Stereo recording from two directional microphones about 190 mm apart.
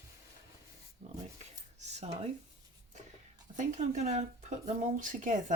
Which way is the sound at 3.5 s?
35° right (ahead or behind).